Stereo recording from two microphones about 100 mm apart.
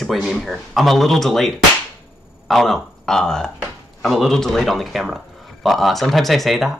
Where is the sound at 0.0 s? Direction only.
Centre (ahead or behind).